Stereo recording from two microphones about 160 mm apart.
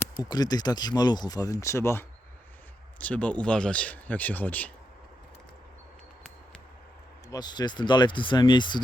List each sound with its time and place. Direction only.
0.0 s speech: 25° left (ahead or behind)
7.3 s speech: 25° left (ahead or behind)